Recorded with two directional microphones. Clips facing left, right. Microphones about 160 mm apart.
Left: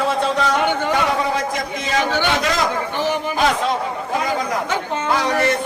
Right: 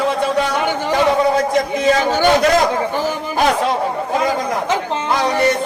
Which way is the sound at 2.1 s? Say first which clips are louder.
Right 6 dB; 45° right (ahead or behind).